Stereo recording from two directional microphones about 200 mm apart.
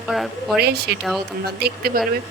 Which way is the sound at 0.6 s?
55° right (ahead or behind).